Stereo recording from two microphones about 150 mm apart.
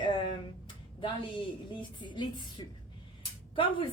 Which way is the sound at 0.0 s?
30° left (ahead or behind).